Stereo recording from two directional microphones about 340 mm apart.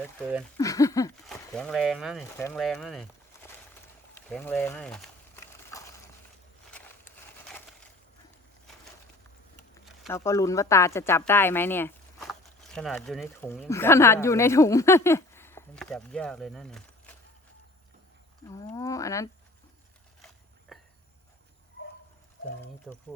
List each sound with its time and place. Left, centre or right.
0.0 s speech: centre
0.5 s speech: centre
9.7 s speech: centre
18.4 s speech: centre
20.7 s insect: centre
21.8 s a sound: left
22.9 s speech: centre